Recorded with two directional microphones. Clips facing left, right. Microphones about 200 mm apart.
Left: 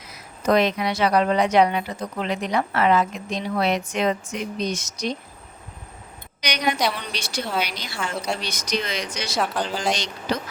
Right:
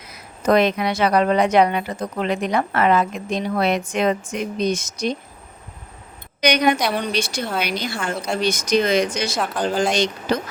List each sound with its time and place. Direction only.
0.4 s a woman's voice: 55° right (ahead or behind)
6.4 s a woman's voice: 55° right (ahead or behind)